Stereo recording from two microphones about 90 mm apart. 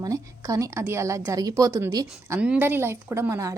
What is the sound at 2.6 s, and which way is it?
Speech, 25° right (ahead or behind).